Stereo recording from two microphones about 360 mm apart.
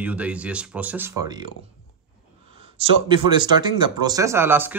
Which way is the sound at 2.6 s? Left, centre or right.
Centre.